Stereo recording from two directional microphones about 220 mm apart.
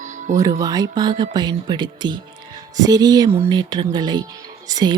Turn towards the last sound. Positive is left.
turn(degrees=-15)  # may be behind; listen again after turning